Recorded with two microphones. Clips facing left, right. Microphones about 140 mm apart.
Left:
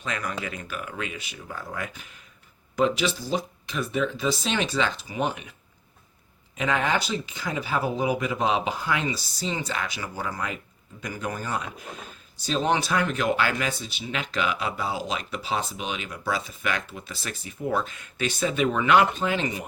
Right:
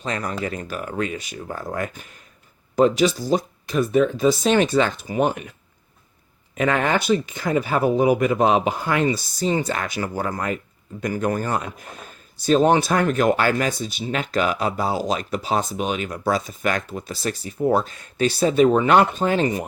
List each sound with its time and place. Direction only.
0.0 s speech: 35° right (ahead or behind)
6.6 s speech: 55° right (ahead or behind)